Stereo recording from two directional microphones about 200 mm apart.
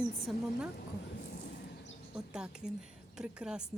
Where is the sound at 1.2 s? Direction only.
55° left (ahead or behind).